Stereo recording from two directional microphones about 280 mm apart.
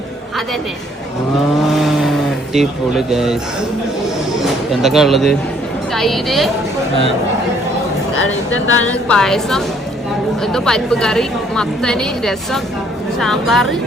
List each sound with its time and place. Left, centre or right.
1.7 s a sound: centre
4.7 s a woman's voice: centre
8.1 s speech: left
8.9 s a woman's voice: centre